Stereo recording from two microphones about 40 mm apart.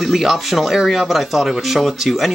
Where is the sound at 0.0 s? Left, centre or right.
Centre.